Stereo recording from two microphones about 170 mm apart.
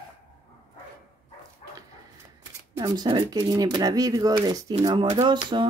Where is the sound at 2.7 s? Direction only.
20° right (ahead or behind).